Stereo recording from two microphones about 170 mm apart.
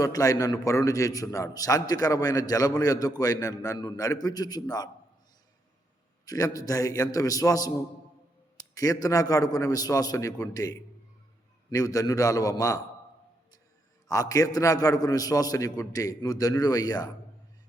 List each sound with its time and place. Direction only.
0.0 s a man's voice: 20° left (ahead or behind)
6.2 s a man's voice: 20° left (ahead or behind)
14.1 s a man's voice: 20° left (ahead or behind)